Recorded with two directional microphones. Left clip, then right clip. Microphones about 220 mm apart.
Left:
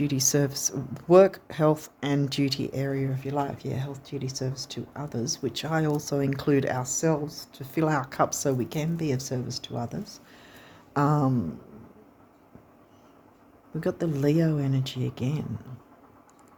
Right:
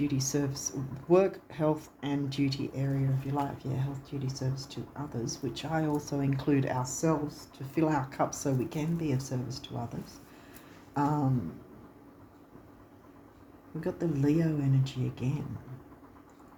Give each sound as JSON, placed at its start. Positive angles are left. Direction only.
{"t": 0.0, "sound": "speech", "side_deg": 50}
{"t": 13.8, "sound": "speech", "side_deg": 50}